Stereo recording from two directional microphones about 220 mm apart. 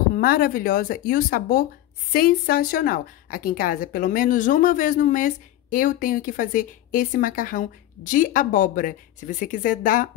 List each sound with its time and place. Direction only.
0.1 s a woman's voice: 40° left (ahead or behind)